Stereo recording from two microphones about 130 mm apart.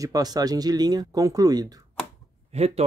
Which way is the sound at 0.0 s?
30° right (ahead or behind).